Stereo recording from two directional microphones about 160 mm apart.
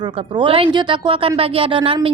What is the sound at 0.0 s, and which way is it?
A woman's voice, 30° right (ahead or behind).